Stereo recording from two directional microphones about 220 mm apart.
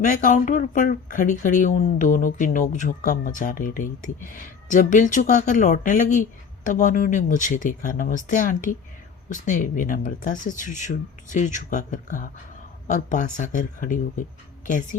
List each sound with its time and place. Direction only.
0.0 s speech: 35° left (ahead or behind)